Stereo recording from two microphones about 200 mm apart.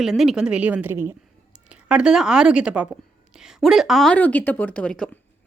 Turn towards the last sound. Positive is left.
turn(degrees=5)  # may be behind; listen again after turning